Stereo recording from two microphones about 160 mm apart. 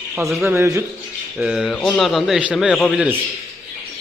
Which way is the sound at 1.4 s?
5° right (ahead or behind).